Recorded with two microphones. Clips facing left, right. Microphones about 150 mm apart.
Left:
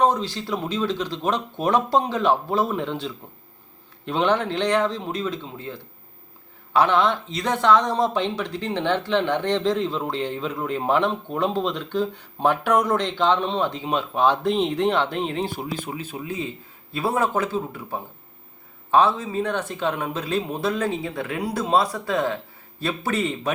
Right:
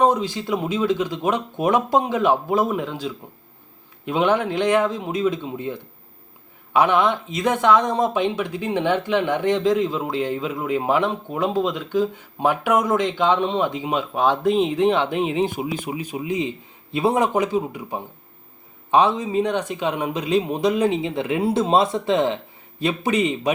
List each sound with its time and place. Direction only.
0.0 s speech: 15° right (ahead or behind)